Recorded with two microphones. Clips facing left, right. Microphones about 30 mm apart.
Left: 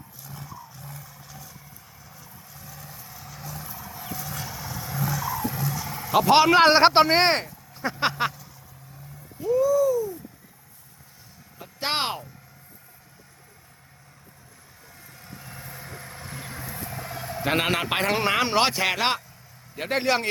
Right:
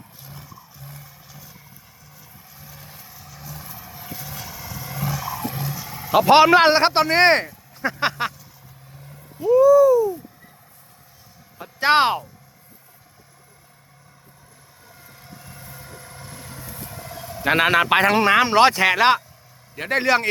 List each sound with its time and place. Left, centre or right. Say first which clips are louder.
0.3 s roar: left 4 dB; centre
2.1 s vehicle: right 1 dB; centre
2.8 s vehicle: even; right
3.1 s vehicle: left 1 dB; centre
4.9 s vehicle: even; centre
5.4 s vehicle: even; right
5.7 s a sound: right 5 dB; centre
6.7 s speech: left 1 dB; centre
7.2 s speech: right 6 dB; centre
7.7 s a sound: right 2 dB; centre
9.4 s a sound: right 8 dB; centre
11.5 s speech: right 11 dB; centre
14.8 s vehicle: right 1 dB; centre
17.4 s a man's voice: right 7 dB; centre